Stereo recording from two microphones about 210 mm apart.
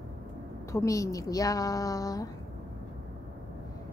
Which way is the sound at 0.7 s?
15° left (ahead or behind).